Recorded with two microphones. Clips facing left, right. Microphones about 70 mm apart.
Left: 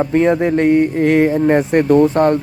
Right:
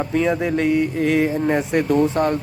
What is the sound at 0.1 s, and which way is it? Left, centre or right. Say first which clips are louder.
Speech: left 4 dB; left.